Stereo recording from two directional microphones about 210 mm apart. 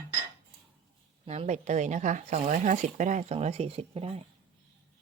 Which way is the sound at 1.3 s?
35° right (ahead or behind).